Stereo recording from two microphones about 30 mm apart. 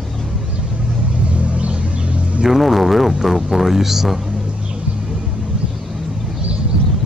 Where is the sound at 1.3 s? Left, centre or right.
Right.